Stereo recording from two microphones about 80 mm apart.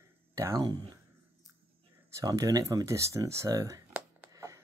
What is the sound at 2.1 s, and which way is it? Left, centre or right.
Speech, right.